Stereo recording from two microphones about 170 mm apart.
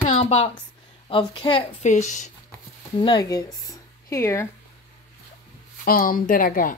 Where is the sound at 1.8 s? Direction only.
45° left (ahead or behind).